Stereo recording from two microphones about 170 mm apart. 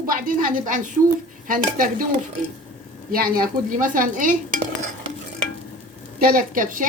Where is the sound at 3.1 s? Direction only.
60° right (ahead or behind).